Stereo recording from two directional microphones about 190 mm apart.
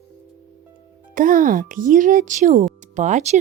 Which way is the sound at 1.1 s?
45° right (ahead or behind).